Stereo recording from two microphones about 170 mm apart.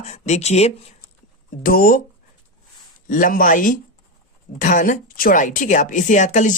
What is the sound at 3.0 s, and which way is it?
A woman's voice, 50° left (ahead or behind).